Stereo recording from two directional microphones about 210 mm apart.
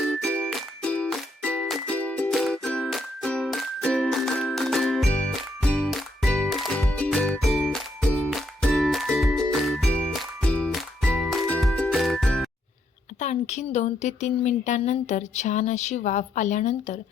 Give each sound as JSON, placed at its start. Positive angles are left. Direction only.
{"t": 0.2, "sound": "music", "side_deg": 5}
{"t": 13.1, "sound": "speech", "side_deg": 35}